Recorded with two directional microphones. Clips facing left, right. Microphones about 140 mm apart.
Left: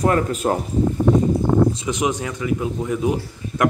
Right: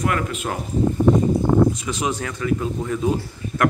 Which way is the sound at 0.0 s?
35° left (ahead or behind).